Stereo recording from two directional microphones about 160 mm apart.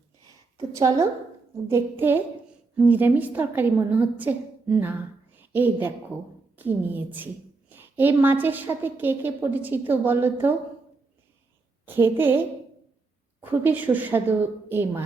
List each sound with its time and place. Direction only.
0.7 s a woman's voice: 20° right (ahead or behind)
11.9 s a woman's voice: 15° right (ahead or behind)